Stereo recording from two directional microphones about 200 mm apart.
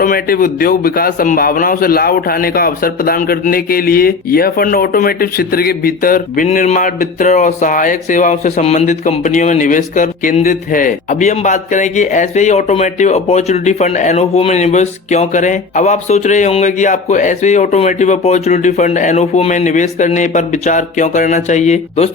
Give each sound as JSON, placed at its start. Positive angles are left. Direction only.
{"t": 0.0, "sound": "a man's voice", "side_deg": 45}